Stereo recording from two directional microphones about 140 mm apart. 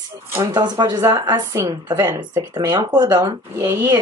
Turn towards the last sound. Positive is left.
turn(degrees=-25)  # may be behind; listen again after turning